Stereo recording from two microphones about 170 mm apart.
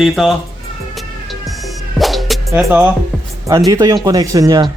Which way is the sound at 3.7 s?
20° right (ahead or behind).